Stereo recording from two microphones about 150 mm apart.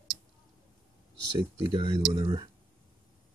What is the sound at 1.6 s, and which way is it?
Speech, 35° right (ahead or behind).